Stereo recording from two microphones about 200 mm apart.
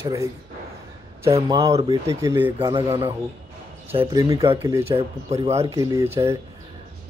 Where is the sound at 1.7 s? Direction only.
30° right (ahead or behind).